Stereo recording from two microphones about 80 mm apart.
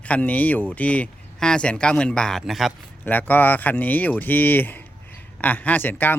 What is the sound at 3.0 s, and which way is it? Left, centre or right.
Speech, left.